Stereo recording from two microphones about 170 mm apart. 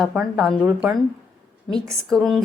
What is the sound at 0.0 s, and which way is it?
Speech, centre (ahead or behind).